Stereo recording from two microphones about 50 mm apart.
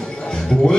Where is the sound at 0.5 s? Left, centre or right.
Centre.